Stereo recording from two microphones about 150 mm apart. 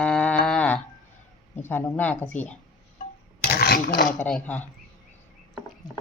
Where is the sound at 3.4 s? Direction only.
90° left; by 4.1 s 75° left (ahead or behind).